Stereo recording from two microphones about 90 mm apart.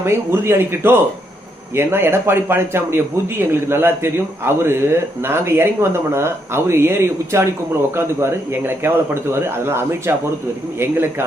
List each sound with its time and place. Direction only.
0.0 s speech: 30° right (ahead or behind)